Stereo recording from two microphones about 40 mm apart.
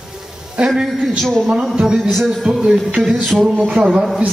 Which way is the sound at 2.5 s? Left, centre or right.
Centre.